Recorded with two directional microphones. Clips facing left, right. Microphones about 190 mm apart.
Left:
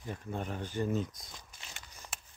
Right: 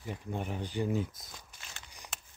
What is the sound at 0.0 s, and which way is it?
Speech, 15° right (ahead or behind).